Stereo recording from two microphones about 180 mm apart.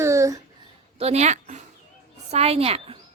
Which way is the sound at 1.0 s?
35° right (ahead or behind).